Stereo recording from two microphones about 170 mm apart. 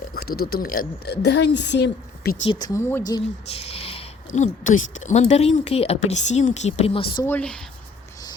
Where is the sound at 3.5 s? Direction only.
35° left (ahead or behind).